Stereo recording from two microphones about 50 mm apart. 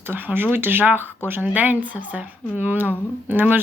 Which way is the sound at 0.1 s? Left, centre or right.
Right.